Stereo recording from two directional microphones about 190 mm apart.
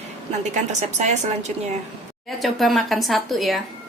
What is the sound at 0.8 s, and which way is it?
Speech, 35° right (ahead or behind).